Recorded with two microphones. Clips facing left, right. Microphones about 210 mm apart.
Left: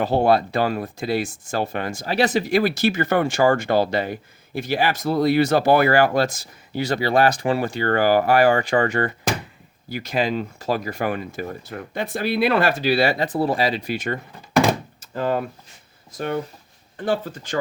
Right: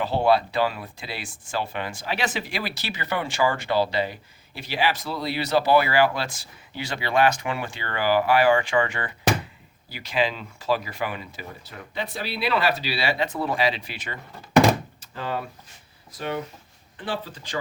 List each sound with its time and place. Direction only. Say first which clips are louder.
0.0 s speech: left 3 dB; 45° left (ahead or behind)